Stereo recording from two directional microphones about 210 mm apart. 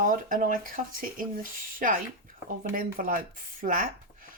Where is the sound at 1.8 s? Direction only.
40° right (ahead or behind).